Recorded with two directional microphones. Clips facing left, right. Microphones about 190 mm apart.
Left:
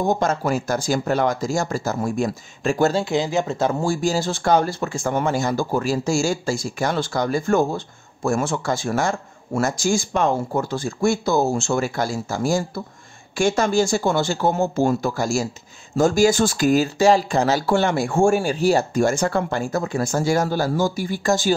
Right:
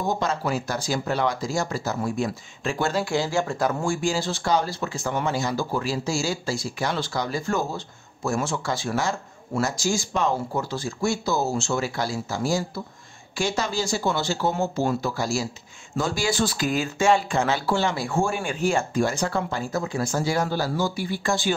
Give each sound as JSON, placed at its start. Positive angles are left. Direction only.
{"t": 0.1, "sound": "speech", "side_deg": 50}
{"t": 2.9, "sound": "speech", "side_deg": 25}
{"t": 3.8, "sound": "speech", "side_deg": 40}
{"t": 17.6, "sound": "speech", "side_deg": 55}